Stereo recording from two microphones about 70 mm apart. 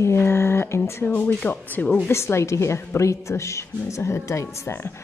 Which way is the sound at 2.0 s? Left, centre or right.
Left.